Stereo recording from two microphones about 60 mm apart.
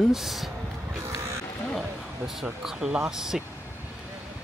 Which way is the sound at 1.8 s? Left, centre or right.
Centre.